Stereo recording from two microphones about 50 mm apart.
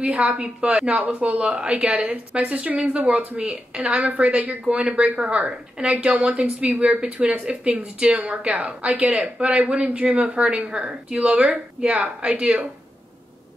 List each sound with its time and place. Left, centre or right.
0.1 s a woman's voice: right